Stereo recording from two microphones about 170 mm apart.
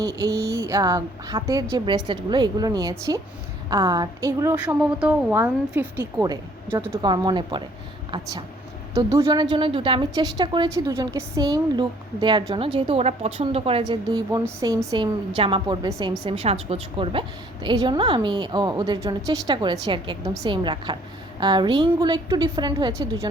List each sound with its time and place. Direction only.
0.0 s a woman's voice: 20° right (ahead or behind)
6.8 s a woman's voice: 30° right (ahead or behind)